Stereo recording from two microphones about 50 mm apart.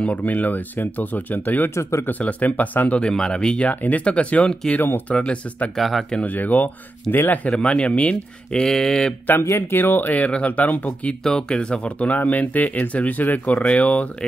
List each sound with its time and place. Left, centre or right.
0.0 s speech: left
1.8 s speech: left
2.0 s speech: left
3.0 s speech: centre
3.6 s speech: left
4.7 s speech: left
5.2 s speech: left
5.8 s speech: centre
6.2 s speech: left
7.4 s speech: left
8.5 s speech: centre
9.4 s speech: left
11.2 s speech: centre